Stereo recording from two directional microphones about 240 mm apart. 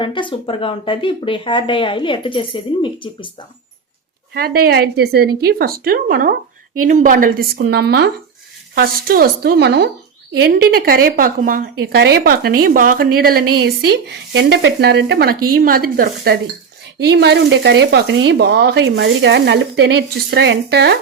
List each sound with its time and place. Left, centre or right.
0.0 s speech: centre
4.4 s a woman's voice: right